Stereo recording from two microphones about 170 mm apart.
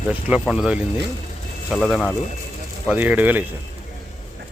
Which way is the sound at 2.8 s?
10° right (ahead or behind).